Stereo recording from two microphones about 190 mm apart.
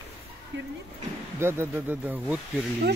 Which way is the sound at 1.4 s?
15° right (ahead or behind).